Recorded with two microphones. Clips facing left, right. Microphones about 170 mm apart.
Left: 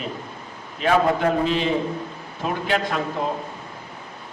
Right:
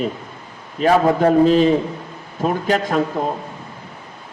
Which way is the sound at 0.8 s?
40° right (ahead or behind).